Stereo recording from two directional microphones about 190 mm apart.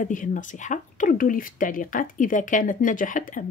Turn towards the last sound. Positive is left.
turn(degrees=45)  # may be behind; listen again after turning